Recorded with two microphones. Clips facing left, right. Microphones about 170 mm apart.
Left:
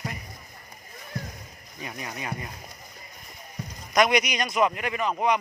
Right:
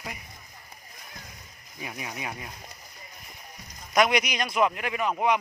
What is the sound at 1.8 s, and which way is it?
Speech, 5° right (ahead or behind).